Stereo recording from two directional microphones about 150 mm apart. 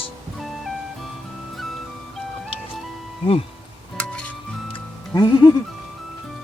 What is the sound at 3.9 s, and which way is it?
Music, 10° left (ahead or behind).